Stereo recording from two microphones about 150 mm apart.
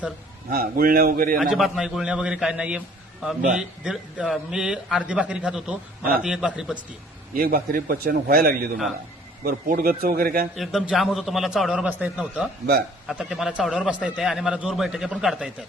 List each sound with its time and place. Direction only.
0.5 s a man's voice: 75° right (ahead or behind)
1.4 s a man's voice: centre (ahead or behind)
7.3 s a man's voice: 75° right (ahead or behind)
10.6 s a man's voice: centre (ahead or behind)